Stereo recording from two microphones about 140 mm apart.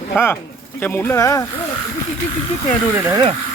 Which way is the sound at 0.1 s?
15° left (ahead or behind).